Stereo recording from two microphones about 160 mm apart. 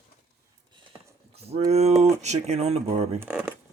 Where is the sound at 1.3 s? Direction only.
40° right (ahead or behind).